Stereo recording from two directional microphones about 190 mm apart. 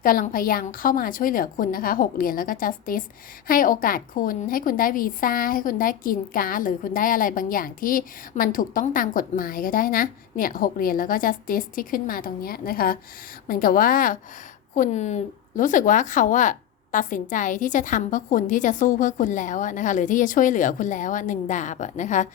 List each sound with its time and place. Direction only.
0.0 s a woman's voice: 50° left (ahead or behind)